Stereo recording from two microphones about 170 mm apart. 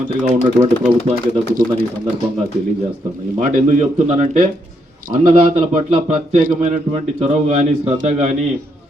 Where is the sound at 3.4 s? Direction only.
45° right (ahead or behind).